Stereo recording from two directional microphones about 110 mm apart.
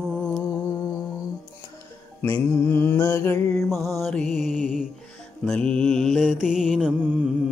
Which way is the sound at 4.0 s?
10° left (ahead or behind).